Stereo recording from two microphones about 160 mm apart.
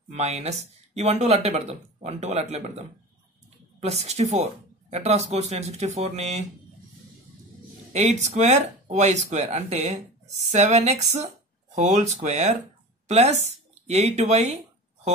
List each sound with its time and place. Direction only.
0.1 s speech: 45° right (ahead or behind)
3.8 s speech: 40° right (ahead or behind)
7.9 s speech: 45° right (ahead or behind)